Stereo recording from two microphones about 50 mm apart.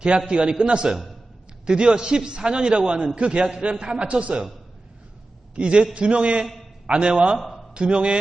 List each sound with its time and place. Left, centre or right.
0.3 s a man's voice: centre
5.5 s a man's voice: right
7.3 s a man's voice: centre
7.7 s a man's voice: centre